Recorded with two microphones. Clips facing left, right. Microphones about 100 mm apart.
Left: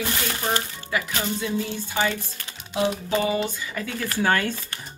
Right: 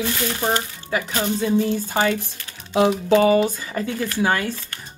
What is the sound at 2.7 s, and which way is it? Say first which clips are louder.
Typing: right 7 dB; 85° right.